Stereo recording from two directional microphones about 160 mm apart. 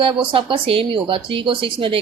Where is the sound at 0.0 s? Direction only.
35° right (ahead or behind).